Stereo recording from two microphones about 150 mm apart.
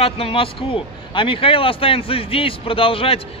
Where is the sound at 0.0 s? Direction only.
40° left (ahead or behind).